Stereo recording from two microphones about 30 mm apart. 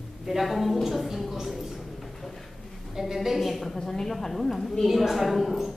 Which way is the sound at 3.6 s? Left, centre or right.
Centre.